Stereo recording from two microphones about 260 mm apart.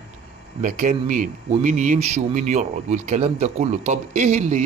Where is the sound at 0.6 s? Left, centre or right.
Right.